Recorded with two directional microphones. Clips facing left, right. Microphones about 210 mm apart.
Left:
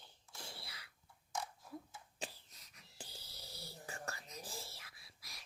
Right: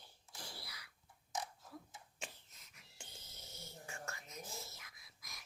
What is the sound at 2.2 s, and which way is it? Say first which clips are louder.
Whispering: left 4 dB; 35° left (ahead or behind).